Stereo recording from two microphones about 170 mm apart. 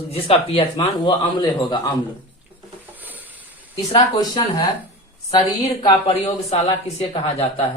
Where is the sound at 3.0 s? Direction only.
10° right (ahead or behind).